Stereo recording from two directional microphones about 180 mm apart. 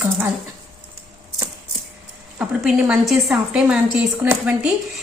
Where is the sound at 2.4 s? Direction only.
5° right (ahead or behind).